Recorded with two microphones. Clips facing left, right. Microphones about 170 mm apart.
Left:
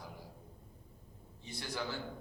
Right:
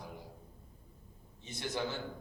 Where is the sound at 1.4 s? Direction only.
20° right (ahead or behind).